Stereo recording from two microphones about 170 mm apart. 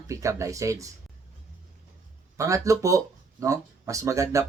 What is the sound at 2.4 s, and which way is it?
Speech, 20° right (ahead or behind).